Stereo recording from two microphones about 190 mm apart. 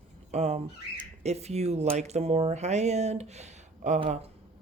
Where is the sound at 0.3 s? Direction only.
35° right (ahead or behind).